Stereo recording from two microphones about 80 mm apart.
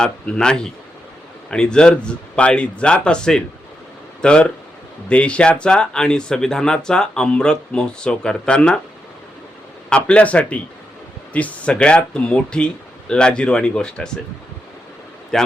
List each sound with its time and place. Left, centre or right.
0.0 s speech: centre
9.9 s speech: centre
15.3 s a man's voice: centre